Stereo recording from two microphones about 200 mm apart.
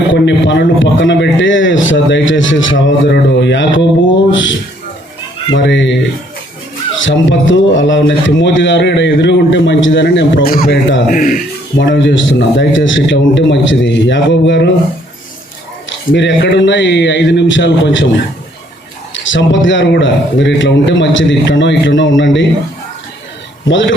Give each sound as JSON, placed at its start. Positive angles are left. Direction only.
{"t": 0.1, "sound": "a man's voice", "side_deg": 65}
{"t": 5.5, "sound": "a man's voice", "side_deg": 65}
{"t": 7.0, "sound": "a man's voice", "side_deg": 70}
{"t": 11.1, "sound": "speech", "side_deg": 45}
{"t": 11.8, "sound": "a man's voice", "side_deg": 65}
{"t": 16.1, "sound": "a man's voice", "side_deg": 60}
{"t": 19.1, "sound": "a man's voice", "side_deg": 70}
{"t": 23.6, "sound": "a man's voice", "side_deg": 70}